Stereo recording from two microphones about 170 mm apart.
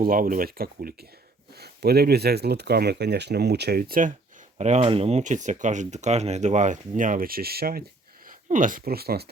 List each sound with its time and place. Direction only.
0.0 s speech: 55° right (ahead or behind)
4.5 s speech: 40° right (ahead or behind); by 7.9 s 65° right (ahead or behind)
8.3 s speech: 50° right (ahead or behind)